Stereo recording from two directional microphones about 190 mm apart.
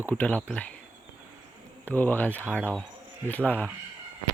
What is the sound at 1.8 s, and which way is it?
A man's voice, 10° left (ahead or behind).